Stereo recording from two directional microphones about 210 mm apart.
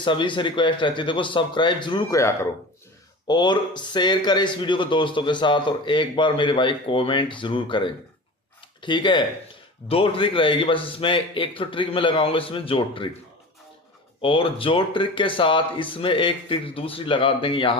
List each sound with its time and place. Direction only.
0.0 s speech: 25° left (ahead or behind)
14.2 s speech: 25° left (ahead or behind)